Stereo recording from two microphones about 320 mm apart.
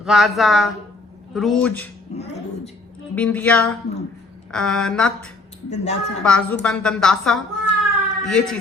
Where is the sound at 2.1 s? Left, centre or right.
Centre.